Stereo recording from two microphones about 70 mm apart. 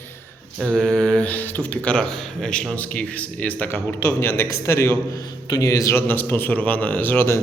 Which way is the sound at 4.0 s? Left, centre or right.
Left.